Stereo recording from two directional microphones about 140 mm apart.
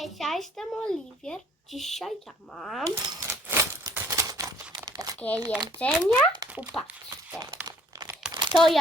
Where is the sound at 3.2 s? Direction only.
20° right (ahead or behind).